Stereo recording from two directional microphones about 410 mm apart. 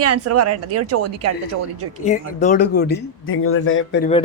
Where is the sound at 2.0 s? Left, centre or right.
Centre.